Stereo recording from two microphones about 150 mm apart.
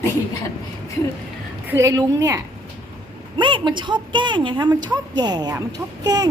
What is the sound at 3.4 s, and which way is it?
A woman's voice, 30° right (ahead or behind).